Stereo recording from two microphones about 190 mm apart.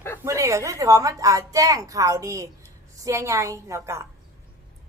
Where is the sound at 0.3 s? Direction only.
15° right (ahead or behind).